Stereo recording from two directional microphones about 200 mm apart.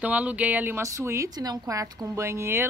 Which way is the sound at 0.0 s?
5° right (ahead or behind).